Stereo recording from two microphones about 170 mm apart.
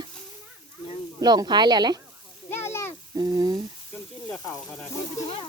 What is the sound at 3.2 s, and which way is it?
Speech, 25° right (ahead or behind).